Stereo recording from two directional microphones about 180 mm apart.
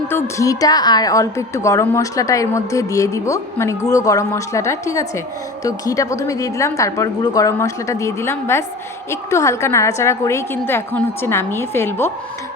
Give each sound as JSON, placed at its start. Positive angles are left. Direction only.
{"t": 0.1, "sound": "a woman's voice", "side_deg": 15}